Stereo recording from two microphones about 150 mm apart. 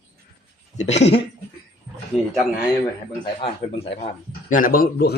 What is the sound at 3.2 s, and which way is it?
Speech, 30° left (ahead or behind).